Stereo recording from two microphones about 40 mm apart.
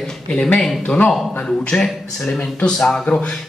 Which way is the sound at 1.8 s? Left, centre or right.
Centre.